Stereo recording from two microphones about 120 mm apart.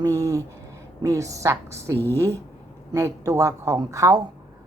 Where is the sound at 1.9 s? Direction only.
15° left (ahead or behind).